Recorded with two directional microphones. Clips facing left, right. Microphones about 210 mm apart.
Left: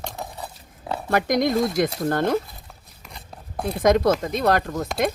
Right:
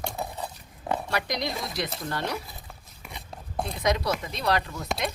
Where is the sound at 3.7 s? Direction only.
50° left (ahead or behind).